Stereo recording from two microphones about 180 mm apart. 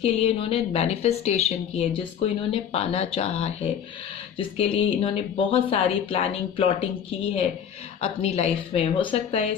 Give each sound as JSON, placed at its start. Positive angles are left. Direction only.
{"t": 0.0, "sound": "speech", "side_deg": 35}
{"t": 8.0, "sound": "speech", "side_deg": 35}